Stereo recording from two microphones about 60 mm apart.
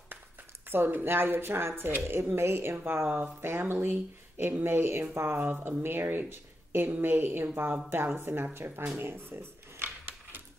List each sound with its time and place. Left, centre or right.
0.7 s speech: right